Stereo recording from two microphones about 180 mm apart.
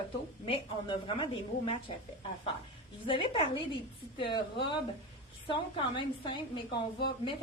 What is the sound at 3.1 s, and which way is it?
A woman's voice, 25° left (ahead or behind).